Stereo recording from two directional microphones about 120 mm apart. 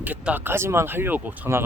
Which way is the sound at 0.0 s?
15° right (ahead or behind).